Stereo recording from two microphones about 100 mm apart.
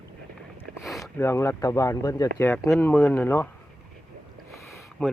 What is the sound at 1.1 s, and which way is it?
Speech, 25° left (ahead or behind).